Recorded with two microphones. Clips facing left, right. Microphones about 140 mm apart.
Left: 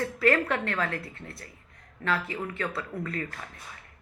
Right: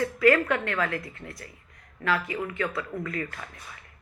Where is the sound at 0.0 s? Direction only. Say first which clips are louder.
Right 3 dB; 35° left (ahead or behind).